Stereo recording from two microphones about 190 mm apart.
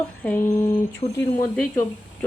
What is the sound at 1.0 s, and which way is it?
Speech, 35° left (ahead or behind).